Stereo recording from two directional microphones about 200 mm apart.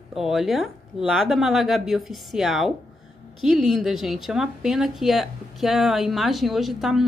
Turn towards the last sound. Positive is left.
turn(degrees=0)  # may be behind; listen again after turning